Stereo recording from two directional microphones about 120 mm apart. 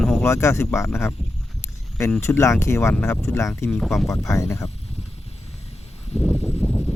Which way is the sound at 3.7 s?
Centre (ahead or behind).